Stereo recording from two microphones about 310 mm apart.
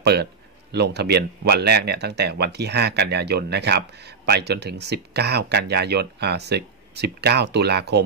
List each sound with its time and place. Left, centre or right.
0.0 s speech: right